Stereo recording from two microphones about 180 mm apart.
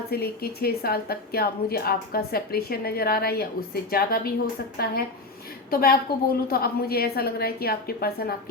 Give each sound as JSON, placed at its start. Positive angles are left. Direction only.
{"t": 0.1, "sound": "a woman's voice", "side_deg": 60}